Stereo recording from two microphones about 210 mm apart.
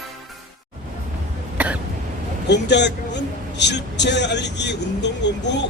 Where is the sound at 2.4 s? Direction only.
55° left (ahead or behind).